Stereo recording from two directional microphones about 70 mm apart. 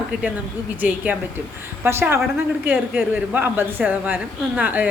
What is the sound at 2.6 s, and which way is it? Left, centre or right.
A woman's voice, right.